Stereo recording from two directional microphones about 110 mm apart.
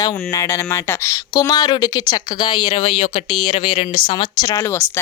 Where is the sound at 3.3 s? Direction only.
50° left (ahead or behind).